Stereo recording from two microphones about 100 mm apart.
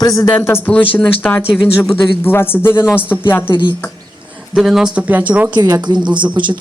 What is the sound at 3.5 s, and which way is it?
Speech, 50° left (ahead or behind).